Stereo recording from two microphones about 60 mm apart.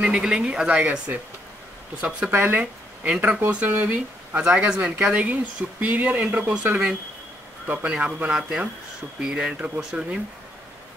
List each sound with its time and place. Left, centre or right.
0.0 s speech: centre
0.7 s speech: right
2.3 s speech: right
2.6 s speech: right
4.5 s speech: centre
7.6 s speech: right
8.4 s speech: centre